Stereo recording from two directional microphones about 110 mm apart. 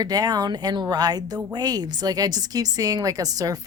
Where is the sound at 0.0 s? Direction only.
35° right (ahead or behind).